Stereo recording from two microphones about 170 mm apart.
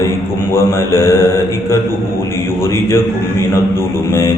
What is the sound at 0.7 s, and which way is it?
Mantra, 15° left (ahead or behind).